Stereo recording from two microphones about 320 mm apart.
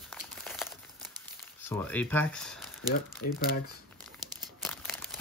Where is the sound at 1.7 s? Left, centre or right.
Centre.